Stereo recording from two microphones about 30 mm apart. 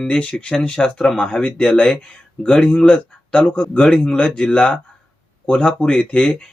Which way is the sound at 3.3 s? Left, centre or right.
Left.